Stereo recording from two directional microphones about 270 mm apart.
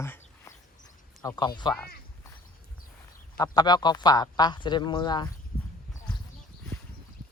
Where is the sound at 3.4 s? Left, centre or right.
Centre.